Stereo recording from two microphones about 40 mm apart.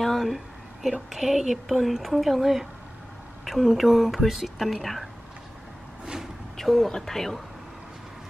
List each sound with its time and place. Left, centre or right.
0.0 s a sound: centre
0.8 s a woman's voice: centre
6.5 s speech: centre